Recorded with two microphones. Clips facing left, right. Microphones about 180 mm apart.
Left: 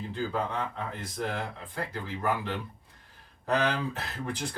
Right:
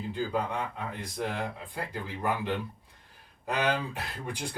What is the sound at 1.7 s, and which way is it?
Speech, 15° right (ahead or behind).